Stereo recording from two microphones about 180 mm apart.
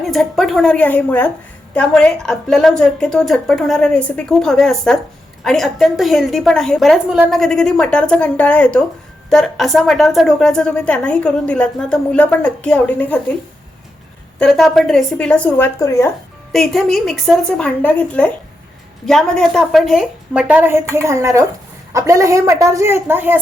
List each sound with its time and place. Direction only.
0.0 s a woman's voice: centre (ahead or behind)
14.3 s a woman's voice: 5° left (ahead or behind)
16.5 s a woman's voice: centre (ahead or behind)